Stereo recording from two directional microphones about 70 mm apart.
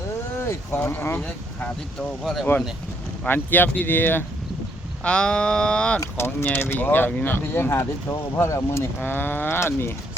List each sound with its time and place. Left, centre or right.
0.3 s boat: left
0.8 s speech: left
1.2 s speech: centre
2.2 s speech: centre
3.2 s speech: left
5.0 s a sound: centre
6.1 s speech: left
9.0 s speech: left